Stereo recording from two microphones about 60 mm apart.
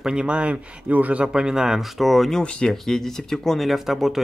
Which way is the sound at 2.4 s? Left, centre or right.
Centre.